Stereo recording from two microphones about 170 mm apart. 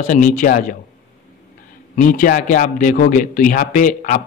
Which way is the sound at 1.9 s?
50° left (ahead or behind).